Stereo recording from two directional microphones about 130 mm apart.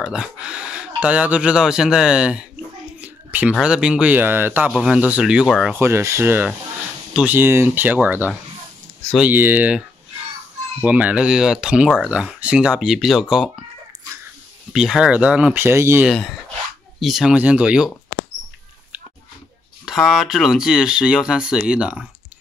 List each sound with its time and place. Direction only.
0.0 s speech: 5° right (ahead or behind)
3.0 s a sound: 10° right (ahead or behind)
3.6 s speech: 5° right (ahead or behind)
5.8 s speech: 20° right (ahead or behind); by 13.7 s 5° right (ahead or behind)
14.7 s speech: 5° right (ahead or behind); by 16.1 s 20° right (ahead or behind)
16.1 s speech: centre (ahead or behind)
19.8 s speech: centre (ahead or behind)